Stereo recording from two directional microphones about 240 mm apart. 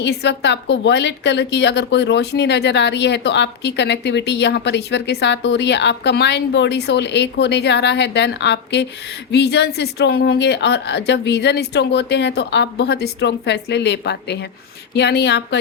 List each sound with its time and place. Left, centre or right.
0.0 s a woman's voice: left